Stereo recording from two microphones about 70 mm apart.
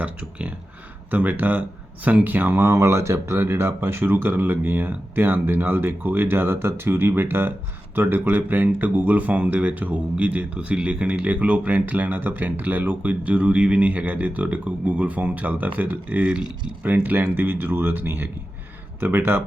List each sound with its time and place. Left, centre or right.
0.0 s speech: right
16.8 s speech: right